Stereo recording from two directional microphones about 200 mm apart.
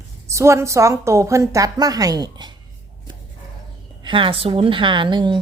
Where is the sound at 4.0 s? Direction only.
25° right (ahead or behind).